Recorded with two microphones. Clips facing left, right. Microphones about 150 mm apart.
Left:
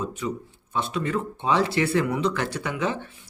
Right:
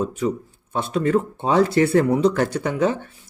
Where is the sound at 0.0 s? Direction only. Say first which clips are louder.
Right 6 dB; 45° right (ahead or behind).